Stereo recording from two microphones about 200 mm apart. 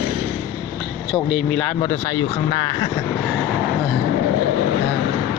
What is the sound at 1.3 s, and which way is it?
Speech, 5° left (ahead or behind).